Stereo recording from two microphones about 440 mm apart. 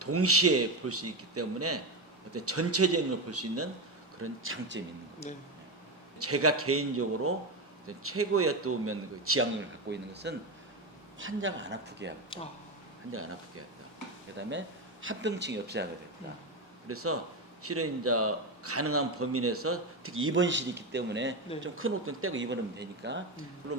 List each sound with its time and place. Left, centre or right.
0.0 s a man's voice: right
6.1 s a man's voice: right
12.3 s speech: centre
13.1 s a man's voice: right
15.0 s a man's voice: right
16.9 s a man's voice: right